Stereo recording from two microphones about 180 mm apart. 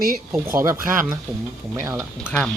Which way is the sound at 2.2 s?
5° left (ahead or behind).